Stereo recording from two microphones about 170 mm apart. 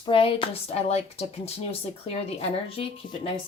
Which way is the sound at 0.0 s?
30° left (ahead or behind).